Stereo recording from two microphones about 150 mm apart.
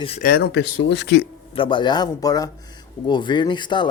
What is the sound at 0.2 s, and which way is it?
A man's voice, 85° left.